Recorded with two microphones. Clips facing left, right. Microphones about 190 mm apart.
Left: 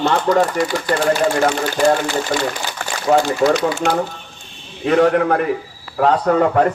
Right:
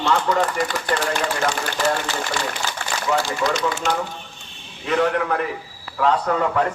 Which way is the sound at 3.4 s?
45° left (ahead or behind).